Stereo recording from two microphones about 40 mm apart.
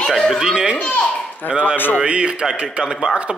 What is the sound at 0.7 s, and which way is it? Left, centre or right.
Speech, left.